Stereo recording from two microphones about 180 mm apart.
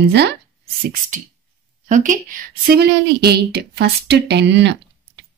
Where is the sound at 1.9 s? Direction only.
45° right (ahead or behind).